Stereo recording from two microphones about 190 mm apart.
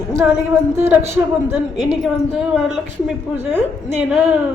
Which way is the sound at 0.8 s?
10° right (ahead or behind).